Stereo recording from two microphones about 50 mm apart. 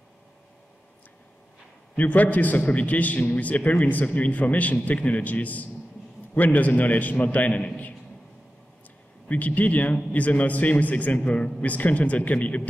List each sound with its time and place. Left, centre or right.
2.0 s a man's voice: left
9.3 s a man's voice: left